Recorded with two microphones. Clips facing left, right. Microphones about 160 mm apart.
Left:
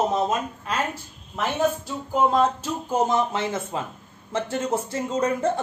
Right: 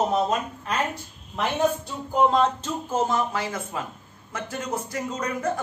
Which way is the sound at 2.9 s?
20° left (ahead or behind).